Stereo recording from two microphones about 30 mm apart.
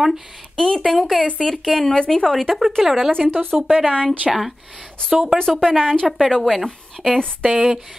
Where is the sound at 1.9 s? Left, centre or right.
Left.